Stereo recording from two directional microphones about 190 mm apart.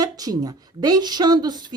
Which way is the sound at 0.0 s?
20° right (ahead or behind).